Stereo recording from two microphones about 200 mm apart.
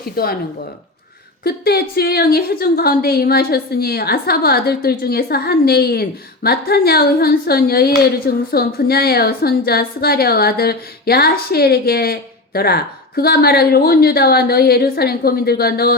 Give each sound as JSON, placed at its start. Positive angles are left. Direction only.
{"t": 0.2, "sound": "a woman's voice", "side_deg": 50}
{"t": 1.5, "sound": "a woman's voice", "side_deg": 50}